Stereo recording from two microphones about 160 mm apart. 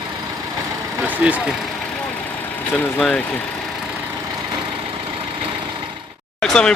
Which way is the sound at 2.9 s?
5° left (ahead or behind).